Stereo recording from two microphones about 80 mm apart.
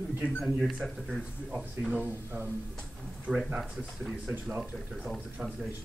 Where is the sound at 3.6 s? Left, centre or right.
Centre.